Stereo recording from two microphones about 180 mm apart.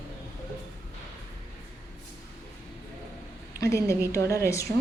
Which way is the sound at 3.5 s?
15° left (ahead or behind).